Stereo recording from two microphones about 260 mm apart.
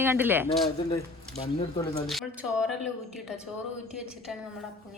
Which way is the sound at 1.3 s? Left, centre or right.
Left.